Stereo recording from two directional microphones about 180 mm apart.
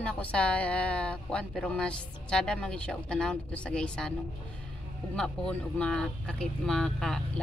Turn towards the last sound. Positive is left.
turn(degrees=5)  # may be behind; listen again after turning